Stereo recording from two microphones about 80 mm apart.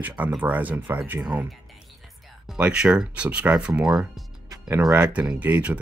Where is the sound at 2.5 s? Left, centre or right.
Centre.